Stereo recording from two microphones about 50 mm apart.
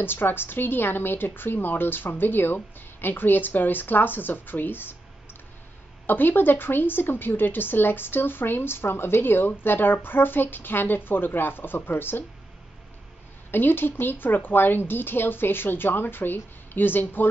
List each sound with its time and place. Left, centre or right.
0.0 s a woman's voice: left
6.0 s a woman's voice: left
13.5 s a woman's voice: left